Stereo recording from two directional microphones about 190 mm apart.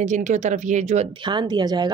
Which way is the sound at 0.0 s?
40° right (ahead or behind).